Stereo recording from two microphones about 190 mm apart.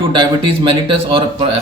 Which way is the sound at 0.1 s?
25° right (ahead or behind).